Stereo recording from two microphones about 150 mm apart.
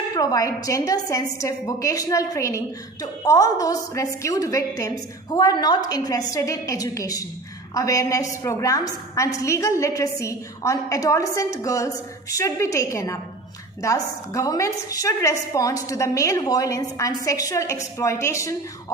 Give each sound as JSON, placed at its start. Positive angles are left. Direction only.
{"t": 0.1, "sound": "a woman's voice", "side_deg": 25}